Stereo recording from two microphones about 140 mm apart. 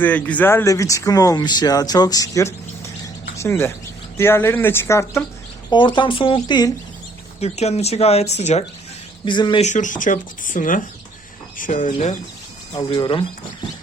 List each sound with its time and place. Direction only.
0.0 s speech: 10° left (ahead or behind)
5.7 s speech: 35° left (ahead or behind)
7.3 s speech: 50° left (ahead or behind)
9.2 s speech: 35° left (ahead or behind)
9.6 s speech: 60° left (ahead or behind)
12.7 s speech: 35° left (ahead or behind)